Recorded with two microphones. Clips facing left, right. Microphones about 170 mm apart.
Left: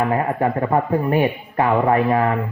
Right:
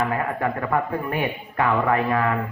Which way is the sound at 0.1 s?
30° left (ahead or behind).